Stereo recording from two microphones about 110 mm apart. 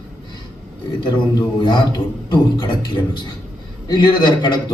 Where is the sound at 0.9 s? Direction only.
45° left (ahead or behind).